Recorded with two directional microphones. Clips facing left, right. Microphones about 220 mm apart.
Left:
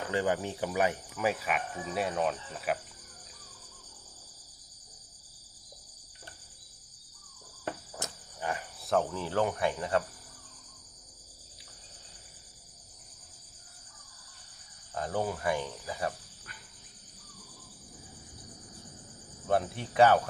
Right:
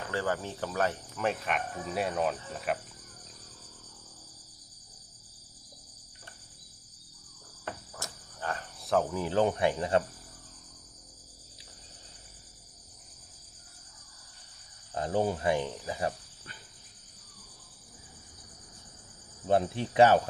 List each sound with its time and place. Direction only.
0.1 s speech: 15° left (ahead or behind); by 2.7 s centre (ahead or behind)
7.9 s cricket: 15° left (ahead or behind)
8.8 s cricket: centre (ahead or behind)
9.1 s speech: 15° right (ahead or behind)
9.4 s speech: 25° right (ahead or behind)
14.9 s speech: 25° right (ahead or behind)
19.5 s speech: 25° right (ahead or behind)